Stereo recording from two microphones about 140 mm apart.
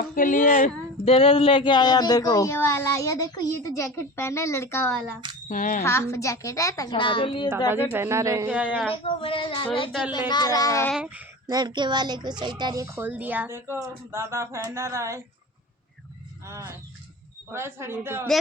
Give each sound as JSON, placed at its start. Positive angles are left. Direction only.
{"t": 0.2, "sound": "speech", "side_deg": 70}
{"t": 1.0, "sound": "speech", "side_deg": 45}
{"t": 5.5, "sound": "speech", "side_deg": 70}
{"t": 5.8, "sound": "speech", "side_deg": 20}
{"t": 6.9, "sound": "a woman's voice", "side_deg": 35}
{"t": 7.9, "sound": "speech", "side_deg": -20}
{"t": 8.4, "sound": "a woman's voice", "side_deg": -10}
{"t": 9.0, "sound": "a woman's voice", "side_deg": 40}
{"t": 10.9, "sound": "a woman's voice", "side_deg": -5}
{"t": 11.4, "sound": "speech", "side_deg": -30}
{"t": 16.5, "sound": "a woman's voice", "side_deg": -20}